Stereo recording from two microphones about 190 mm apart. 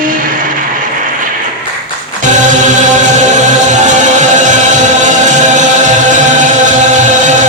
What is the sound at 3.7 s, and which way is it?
Music, 40° right (ahead or behind).